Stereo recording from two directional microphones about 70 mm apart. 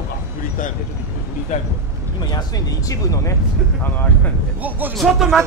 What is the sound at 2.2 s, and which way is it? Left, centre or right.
Speech, left.